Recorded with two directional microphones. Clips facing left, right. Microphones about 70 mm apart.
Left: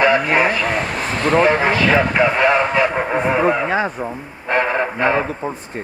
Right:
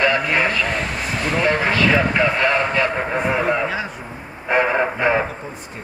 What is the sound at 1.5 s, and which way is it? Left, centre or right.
Speech, left.